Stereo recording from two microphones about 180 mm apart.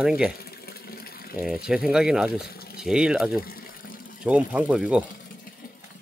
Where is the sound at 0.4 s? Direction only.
60° left (ahead or behind).